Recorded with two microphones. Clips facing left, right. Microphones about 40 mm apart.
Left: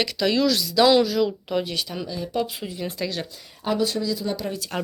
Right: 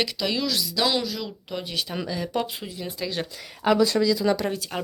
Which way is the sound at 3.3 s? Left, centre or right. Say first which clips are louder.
Right 4 dB; right.